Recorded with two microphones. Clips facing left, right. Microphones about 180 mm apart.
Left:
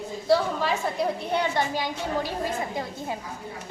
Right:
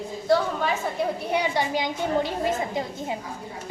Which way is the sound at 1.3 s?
15° right (ahead or behind).